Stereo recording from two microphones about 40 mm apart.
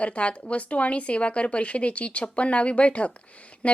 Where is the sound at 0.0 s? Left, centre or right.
Left.